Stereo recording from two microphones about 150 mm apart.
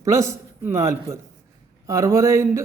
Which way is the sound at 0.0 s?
20° right (ahead or behind).